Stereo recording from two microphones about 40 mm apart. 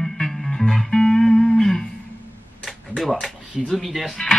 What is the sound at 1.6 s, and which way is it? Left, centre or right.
Guitar, centre.